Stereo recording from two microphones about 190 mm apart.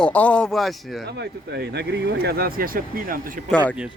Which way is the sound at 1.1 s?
60° right (ahead or behind).